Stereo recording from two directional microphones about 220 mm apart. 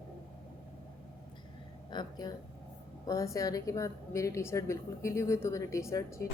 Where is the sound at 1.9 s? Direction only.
20° left (ahead or behind).